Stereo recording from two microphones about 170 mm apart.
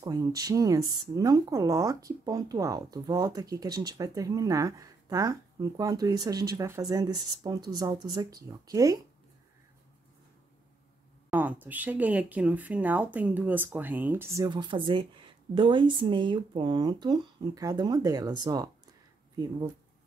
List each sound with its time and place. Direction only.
0.0 s speech: 20° right (ahead or behind)
11.2 s speech: 10° right (ahead or behind)